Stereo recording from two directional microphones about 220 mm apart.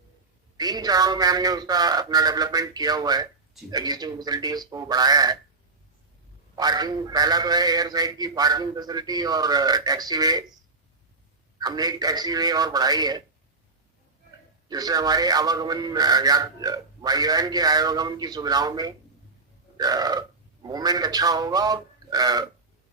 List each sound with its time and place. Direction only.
0.5 s speech: 15° right (ahead or behind)
6.6 s speech: 20° right (ahead or behind)
11.6 s speech: 15° right (ahead or behind)
14.7 s speech: 15° right (ahead or behind)